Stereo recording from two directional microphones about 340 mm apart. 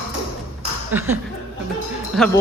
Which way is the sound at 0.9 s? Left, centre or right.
Centre.